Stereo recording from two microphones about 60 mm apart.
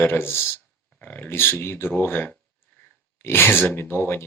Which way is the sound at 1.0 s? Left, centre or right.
Left.